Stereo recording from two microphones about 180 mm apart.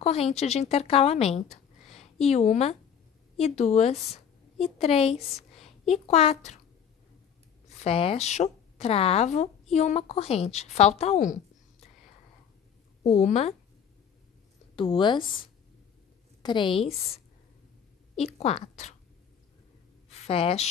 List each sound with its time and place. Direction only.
0.0 s a woman's voice: 35° left (ahead or behind)
7.8 s speech: 30° left (ahead or behind)
13.0 s speech: 40° left (ahead or behind)
14.8 s a woman's voice: 25° left (ahead or behind)
16.4 s a woman's voice: 25° left (ahead or behind)
20.1 s a sound: 35° left (ahead or behind)